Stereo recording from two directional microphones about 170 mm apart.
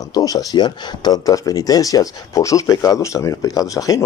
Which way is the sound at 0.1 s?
20° left (ahead or behind).